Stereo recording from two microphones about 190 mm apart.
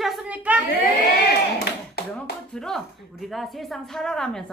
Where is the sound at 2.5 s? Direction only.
Centre (ahead or behind).